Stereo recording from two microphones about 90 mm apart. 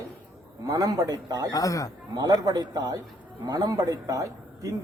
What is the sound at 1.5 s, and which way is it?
Speech, 40° left (ahead or behind).